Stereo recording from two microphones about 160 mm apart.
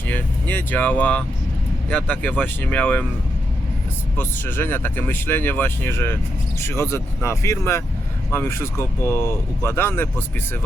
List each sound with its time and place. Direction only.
0.1 s speech: 10° left (ahead or behind)
4.2 s speech: 15° left (ahead or behind)